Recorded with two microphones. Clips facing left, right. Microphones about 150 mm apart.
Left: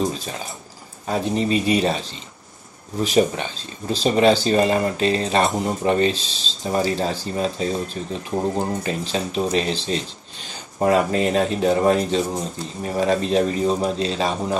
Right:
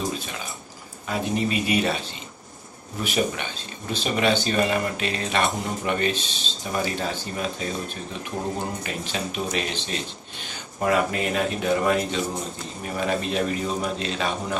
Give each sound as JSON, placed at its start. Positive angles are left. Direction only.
{"t": 1.0, "sound": "a man's voice", "side_deg": 35}